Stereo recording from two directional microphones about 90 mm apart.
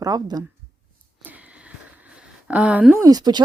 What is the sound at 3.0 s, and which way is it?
Speech, 45° right (ahead or behind).